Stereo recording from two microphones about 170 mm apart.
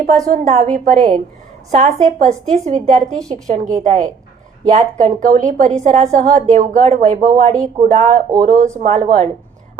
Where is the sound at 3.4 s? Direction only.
45° right (ahead or behind).